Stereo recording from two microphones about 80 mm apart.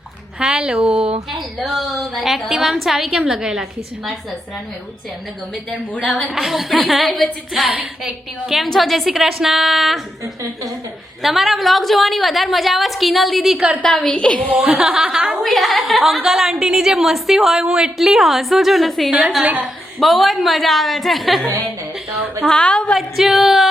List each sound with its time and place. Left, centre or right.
0.3 s speech: centre
1.3 s a woman's voice: centre
6.3 s a woman's voice: centre
10.4 s a woman's voice: right
11.2 s a woman's voice: centre
13.9 s a woman's voice: centre
14.8 s a woman's voice: centre
22.4 s a woman's voice: centre
23.0 s a woman's voice: centre